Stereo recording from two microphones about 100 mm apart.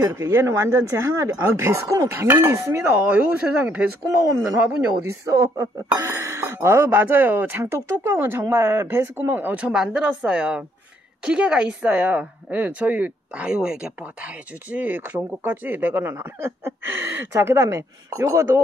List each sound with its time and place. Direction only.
0.0 s speech: 25° right (ahead or behind)
3.1 s a woman's voice: 15° right (ahead or behind)
5.3 s speech: 35° right (ahead or behind)
6.9 s a woman's voice: 20° right (ahead or behind)